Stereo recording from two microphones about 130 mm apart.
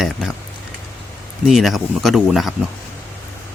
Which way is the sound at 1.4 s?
Centre (ahead or behind).